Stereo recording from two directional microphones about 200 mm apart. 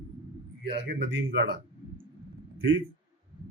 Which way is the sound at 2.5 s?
75° right (ahead or behind).